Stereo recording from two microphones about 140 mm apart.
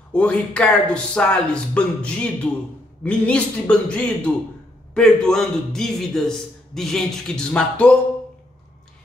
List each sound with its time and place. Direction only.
0.1 s a man's voice: 10° left (ahead or behind)